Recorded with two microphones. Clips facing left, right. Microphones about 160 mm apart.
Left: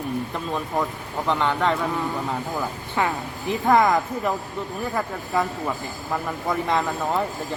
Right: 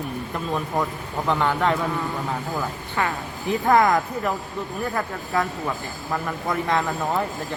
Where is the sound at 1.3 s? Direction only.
Centre (ahead or behind).